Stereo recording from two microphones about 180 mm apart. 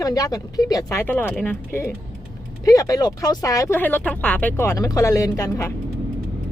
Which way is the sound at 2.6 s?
20° left (ahead or behind).